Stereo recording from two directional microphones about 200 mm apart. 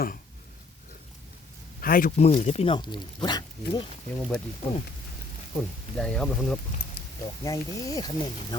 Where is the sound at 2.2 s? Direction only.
30° left (ahead or behind).